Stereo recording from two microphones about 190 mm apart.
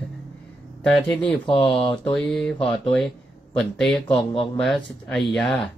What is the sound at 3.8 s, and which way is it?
Speech, centre (ahead or behind).